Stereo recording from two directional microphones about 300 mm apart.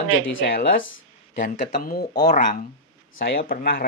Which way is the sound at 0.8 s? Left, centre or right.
Left.